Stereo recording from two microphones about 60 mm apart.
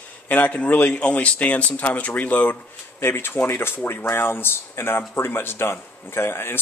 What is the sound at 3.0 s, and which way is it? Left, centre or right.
Speech, left.